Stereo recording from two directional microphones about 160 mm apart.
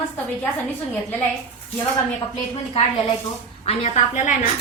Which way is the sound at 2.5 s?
40° left (ahead or behind).